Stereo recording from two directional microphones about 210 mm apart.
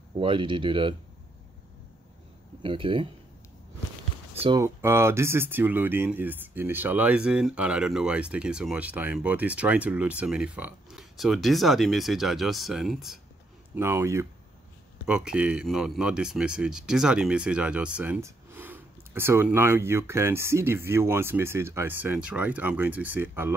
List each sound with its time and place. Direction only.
0.1 s speech: 25° right (ahead or behind)
2.6 s speech: 25° right (ahead or behind)
4.4 s speech: 20° right (ahead or behind)
4.6 s speech: 10° right (ahead or behind)
13.7 s speech: 10° right (ahead or behind)